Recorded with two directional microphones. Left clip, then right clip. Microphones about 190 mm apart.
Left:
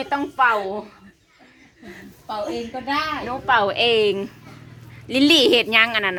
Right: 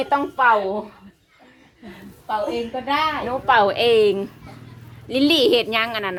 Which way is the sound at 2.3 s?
5° right (ahead or behind).